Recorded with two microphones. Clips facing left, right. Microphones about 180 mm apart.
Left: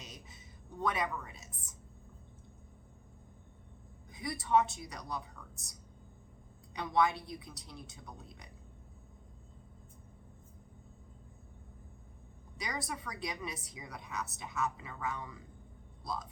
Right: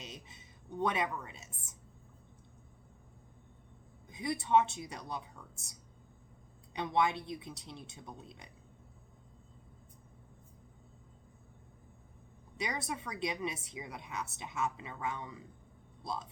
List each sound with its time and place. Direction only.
0.0 s a sound: 25° right (ahead or behind)
0.8 s a woman's voice: 25° right (ahead or behind)
4.1 s a woman's voice: 20° right (ahead or behind)
6.7 s a woman's voice: 20° right (ahead or behind)
12.5 s a woman's voice: 25° right (ahead or behind)